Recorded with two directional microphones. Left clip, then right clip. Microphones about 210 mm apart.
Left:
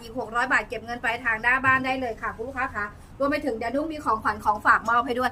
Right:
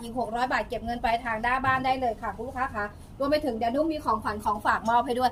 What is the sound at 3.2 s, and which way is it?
A woman's voice, 20° left (ahead or behind).